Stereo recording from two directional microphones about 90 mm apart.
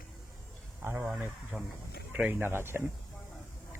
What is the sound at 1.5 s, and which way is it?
Speech, 10° right (ahead or behind).